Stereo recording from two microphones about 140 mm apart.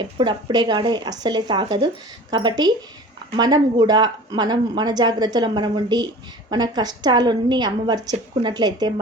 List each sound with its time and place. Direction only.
0.0 s a woman's voice: 35° right (ahead or behind)